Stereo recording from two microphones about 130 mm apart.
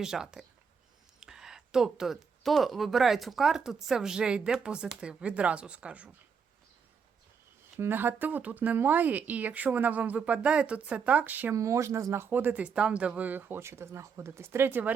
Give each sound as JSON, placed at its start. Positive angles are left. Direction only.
{"t": 0.0, "sound": "speech", "side_deg": -5}
{"t": 7.8, "sound": "speech", "side_deg": -15}
{"t": 11.5, "sound": "speech", "side_deg": -25}